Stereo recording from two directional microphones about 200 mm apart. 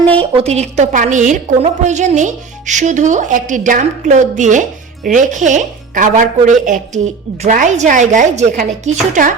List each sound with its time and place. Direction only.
0.2 s a woman's voice: 30° right (ahead or behind)